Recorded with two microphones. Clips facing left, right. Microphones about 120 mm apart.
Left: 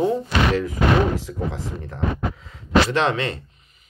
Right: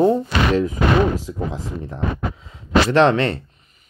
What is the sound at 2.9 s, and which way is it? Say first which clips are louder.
Speech: right 6 dB; 35° right (ahead or behind).